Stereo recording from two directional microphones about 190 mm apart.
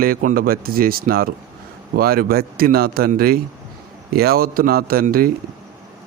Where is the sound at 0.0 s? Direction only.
45° right (ahead or behind).